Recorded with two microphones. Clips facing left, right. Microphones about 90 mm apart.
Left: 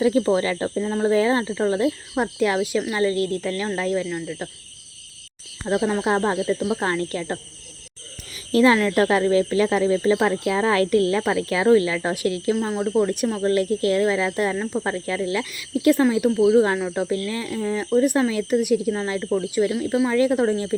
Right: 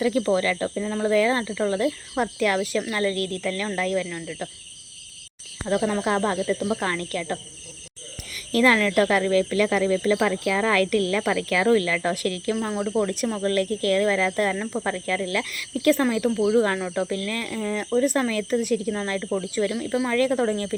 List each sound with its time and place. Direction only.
0.0 s speech: 25° left (ahead or behind)
5.6 s speech: 20° left (ahead or behind)
8.5 s speech: 25° left (ahead or behind)